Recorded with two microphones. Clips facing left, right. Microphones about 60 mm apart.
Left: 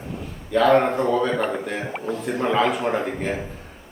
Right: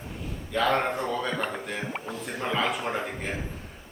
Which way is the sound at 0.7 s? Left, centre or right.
Centre.